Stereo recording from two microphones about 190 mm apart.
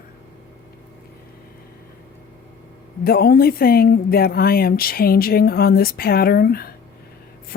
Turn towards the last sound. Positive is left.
turn(degrees=50)  # may be behind; listen again after turning